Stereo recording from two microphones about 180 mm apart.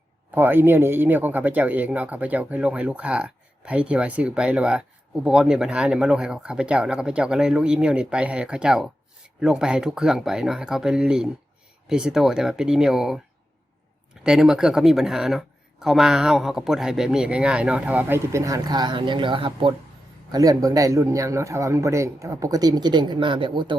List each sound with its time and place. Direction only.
0.3 s speech: 10° right (ahead or behind)
14.3 s speech: 5° right (ahead or behind); by 23.7 s 25° right (ahead or behind)